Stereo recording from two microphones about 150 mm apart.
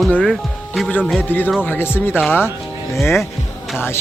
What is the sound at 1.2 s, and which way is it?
Speech, 15° left (ahead or behind).